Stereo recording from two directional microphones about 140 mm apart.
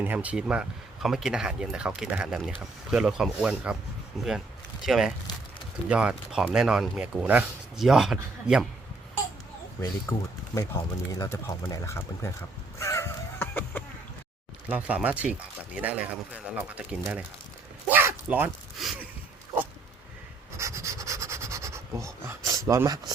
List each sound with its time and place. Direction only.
0.0 s speech: 10° right (ahead or behind)
9.8 s speech: 25° left (ahead or behind)
12.8 s a sound: 20° left (ahead or behind)
14.7 s speech: 10° right (ahead or behind)
17.8 s zipper: 10° right (ahead or behind)
20.6 s rub: 20° right (ahead or behind)